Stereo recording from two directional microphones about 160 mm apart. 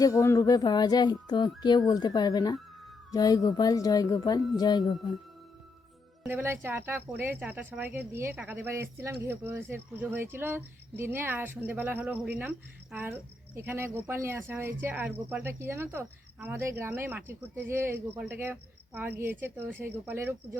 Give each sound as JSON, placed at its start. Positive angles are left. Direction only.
{"t": 0.0, "sound": "speech", "side_deg": 20}
{"t": 6.2, "sound": "speech", "side_deg": -15}